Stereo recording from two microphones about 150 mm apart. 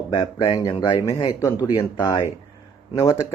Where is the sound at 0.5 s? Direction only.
30° left (ahead or behind).